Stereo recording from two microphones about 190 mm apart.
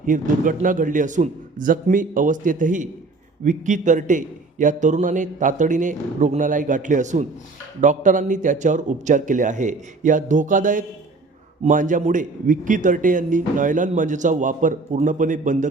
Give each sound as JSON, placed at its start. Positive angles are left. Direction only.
{"t": 0.0, "sound": "a man's voice", "side_deg": -45}